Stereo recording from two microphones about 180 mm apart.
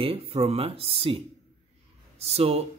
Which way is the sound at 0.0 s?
30° right (ahead or behind).